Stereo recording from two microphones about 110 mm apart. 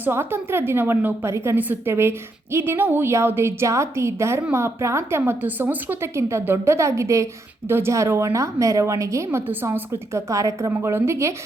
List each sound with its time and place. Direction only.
0.0 s a woman's voice: 20° right (ahead or behind)